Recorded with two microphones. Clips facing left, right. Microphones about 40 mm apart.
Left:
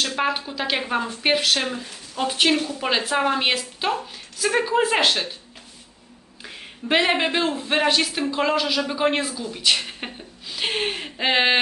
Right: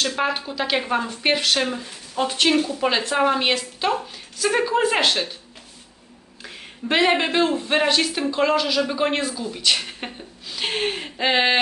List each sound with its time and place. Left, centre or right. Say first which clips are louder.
0.0 s speech: even; centre
2.2 s a woman's voice: right 1 dB; centre
6.4 s speech: right 1 dB; centre